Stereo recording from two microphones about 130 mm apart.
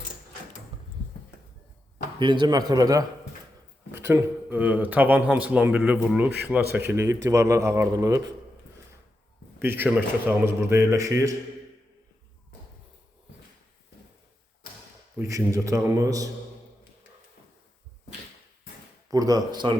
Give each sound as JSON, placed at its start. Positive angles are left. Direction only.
{"t": 2.1, "sound": "a man's voice", "side_deg": -35}
{"t": 3.9, "sound": "speech", "side_deg": -20}
{"t": 7.0, "sound": "speech", "side_deg": -25}
{"t": 9.6, "sound": "speech", "side_deg": -15}
{"t": 15.2, "sound": "speech", "side_deg": -25}
{"t": 19.1, "sound": "speech", "side_deg": -30}